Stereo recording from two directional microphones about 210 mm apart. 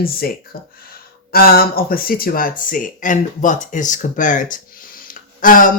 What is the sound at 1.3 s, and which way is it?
Speech, 45° left (ahead or behind).